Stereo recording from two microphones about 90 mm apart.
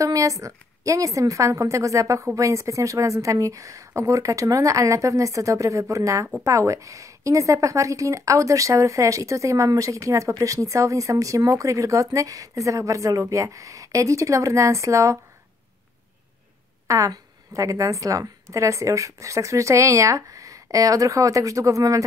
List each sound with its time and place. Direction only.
0.0 s a woman's voice: 40° right (ahead or behind)
16.8 s a woman's voice: 35° right (ahead or behind)